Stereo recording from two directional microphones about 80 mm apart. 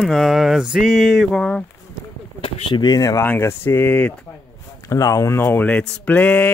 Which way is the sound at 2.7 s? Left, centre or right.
Left.